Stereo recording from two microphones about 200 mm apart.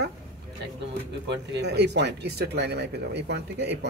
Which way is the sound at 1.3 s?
60° right (ahead or behind).